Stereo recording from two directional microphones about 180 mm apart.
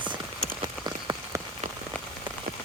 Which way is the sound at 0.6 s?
20° right (ahead or behind).